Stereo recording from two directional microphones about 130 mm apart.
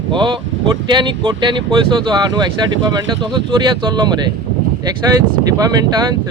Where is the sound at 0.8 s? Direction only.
35° right (ahead or behind).